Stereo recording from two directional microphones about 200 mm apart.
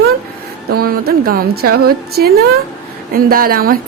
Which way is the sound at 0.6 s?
50° right (ahead or behind).